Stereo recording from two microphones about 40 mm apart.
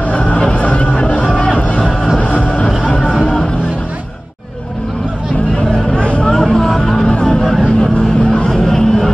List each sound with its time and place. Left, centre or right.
0.1 s music: left
5.9 s a sound: left
6.2 s vehicle: centre
7.2 s a sound: centre
7.6 s vehicle: centre
8.5 s music: centre